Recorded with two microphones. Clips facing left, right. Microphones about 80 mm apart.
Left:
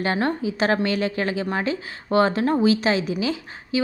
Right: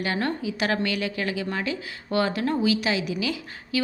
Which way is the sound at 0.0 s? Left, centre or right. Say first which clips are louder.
Left 4 dB; left.